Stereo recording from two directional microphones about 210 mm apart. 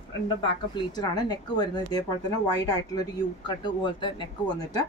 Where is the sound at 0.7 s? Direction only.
20° left (ahead or behind).